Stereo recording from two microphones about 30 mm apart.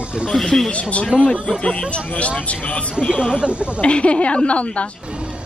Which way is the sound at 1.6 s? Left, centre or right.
Left.